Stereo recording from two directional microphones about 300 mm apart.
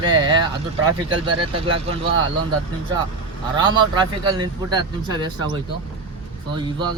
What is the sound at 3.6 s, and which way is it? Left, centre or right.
Speech, centre.